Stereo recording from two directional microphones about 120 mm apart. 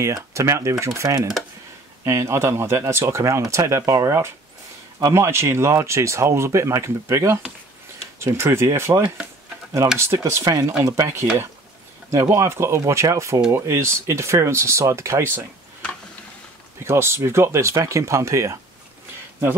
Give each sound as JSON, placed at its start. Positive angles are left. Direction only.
{"t": 0.0, "sound": "speech", "side_deg": -25}
{"t": 16.8, "sound": "speech", "side_deg": -20}